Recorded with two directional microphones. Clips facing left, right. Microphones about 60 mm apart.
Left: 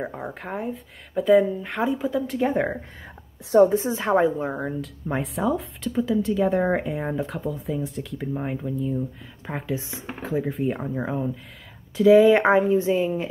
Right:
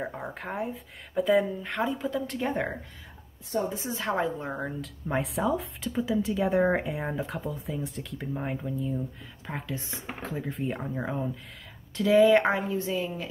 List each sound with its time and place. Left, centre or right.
0.0 s speech: centre
3.7 s a woman's voice: left
4.0 s a woman's voice: left
4.4 s speech: centre
12.3 s a woman's voice: left